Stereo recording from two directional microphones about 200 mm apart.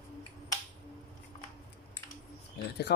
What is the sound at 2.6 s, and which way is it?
Speech, 55° left (ahead or behind).